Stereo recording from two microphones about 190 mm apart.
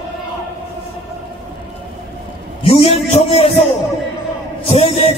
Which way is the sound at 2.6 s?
30° left (ahead or behind).